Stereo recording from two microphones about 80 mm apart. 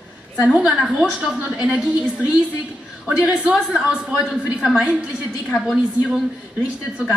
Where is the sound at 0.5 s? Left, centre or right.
Centre.